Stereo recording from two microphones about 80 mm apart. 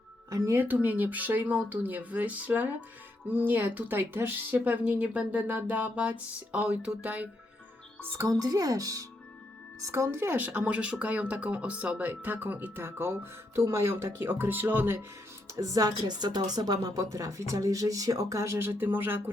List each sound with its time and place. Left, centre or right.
0.3 s speech: right; by 7.3 s centre
8.2 s speech: right
9.8 s speech: right
13.6 s speech: right
15.4 s speech: right
16.0 s speech: right